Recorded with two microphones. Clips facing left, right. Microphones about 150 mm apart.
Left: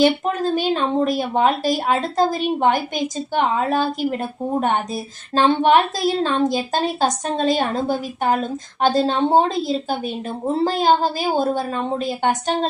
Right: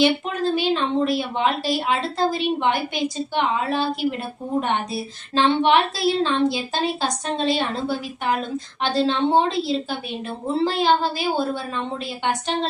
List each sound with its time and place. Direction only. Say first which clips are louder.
0.0 s speech: left 2 dB; 45° left (ahead or behind)